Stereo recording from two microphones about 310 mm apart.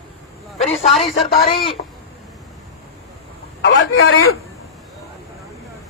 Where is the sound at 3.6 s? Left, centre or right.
Left.